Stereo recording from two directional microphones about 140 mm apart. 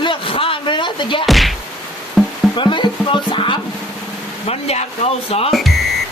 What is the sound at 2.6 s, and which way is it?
Speech, 35° left (ahead or behind).